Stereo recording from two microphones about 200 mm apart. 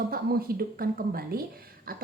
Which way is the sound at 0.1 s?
50° right (ahead or behind).